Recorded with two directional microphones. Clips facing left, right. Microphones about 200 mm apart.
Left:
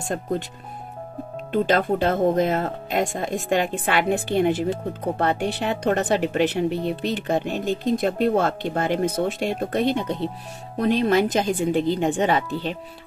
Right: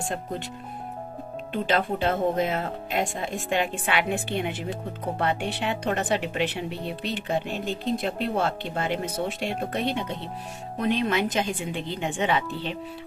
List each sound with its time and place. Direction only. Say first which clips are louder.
1.5 s speech: left 5 dB; 45° left (ahead or behind)